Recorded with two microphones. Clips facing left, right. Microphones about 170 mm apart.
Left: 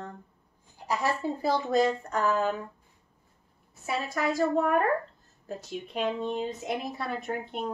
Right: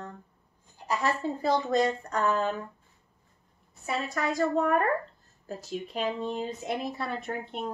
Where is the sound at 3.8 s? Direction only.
5° left (ahead or behind).